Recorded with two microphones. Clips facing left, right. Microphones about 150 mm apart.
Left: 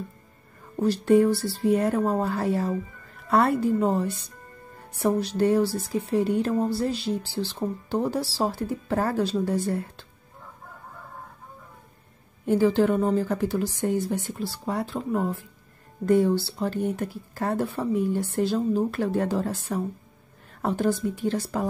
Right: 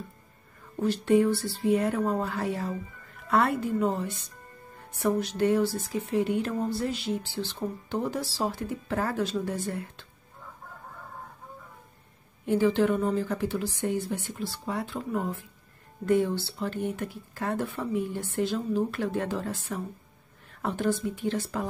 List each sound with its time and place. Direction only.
0.7 s speech: 35° left (ahead or behind)
12.4 s speech: 40° left (ahead or behind)